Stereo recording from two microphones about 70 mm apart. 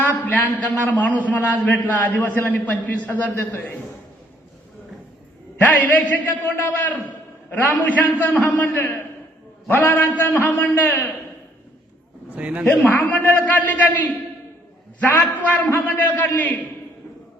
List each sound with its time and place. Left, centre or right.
0.0 s a sound: left
0.9 s a man's voice: left
5.5 s a man's voice: left
8.8 s a man's voice: left
12.3 s a man's voice: centre
12.6 s a man's voice: left